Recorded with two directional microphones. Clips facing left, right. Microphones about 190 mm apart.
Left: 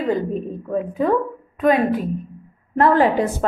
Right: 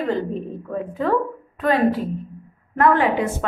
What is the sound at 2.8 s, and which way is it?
Speech, 35° left (ahead or behind).